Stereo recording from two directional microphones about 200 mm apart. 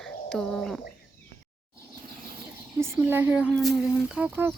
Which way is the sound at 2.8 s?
10° right (ahead or behind).